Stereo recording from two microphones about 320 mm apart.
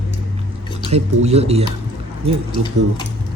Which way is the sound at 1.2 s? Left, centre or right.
Centre.